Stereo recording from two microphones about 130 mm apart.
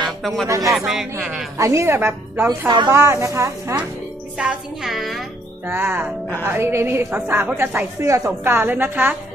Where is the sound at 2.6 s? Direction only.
30° right (ahead or behind).